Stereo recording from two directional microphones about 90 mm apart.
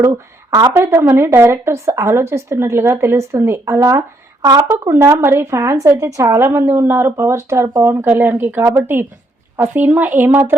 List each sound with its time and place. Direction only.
0.5 s a woman's voice: 45° right (ahead or behind)
0.9 s speech: 25° right (ahead or behind)